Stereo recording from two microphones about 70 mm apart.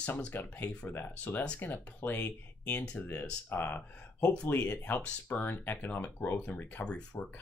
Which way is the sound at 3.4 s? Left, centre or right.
Left.